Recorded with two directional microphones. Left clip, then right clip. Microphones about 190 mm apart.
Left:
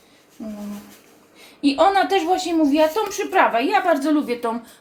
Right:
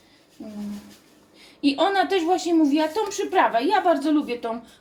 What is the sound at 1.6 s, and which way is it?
Speech, 30° left (ahead or behind).